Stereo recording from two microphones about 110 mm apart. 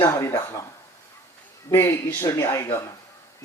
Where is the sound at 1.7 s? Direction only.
25° left (ahead or behind).